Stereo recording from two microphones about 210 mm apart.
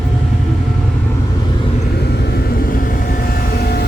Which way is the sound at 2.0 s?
50° left (ahead or behind).